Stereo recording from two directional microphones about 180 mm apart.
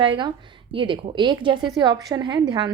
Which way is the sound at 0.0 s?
25° right (ahead or behind).